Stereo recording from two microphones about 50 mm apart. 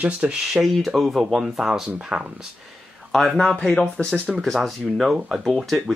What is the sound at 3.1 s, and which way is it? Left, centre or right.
Speech, centre.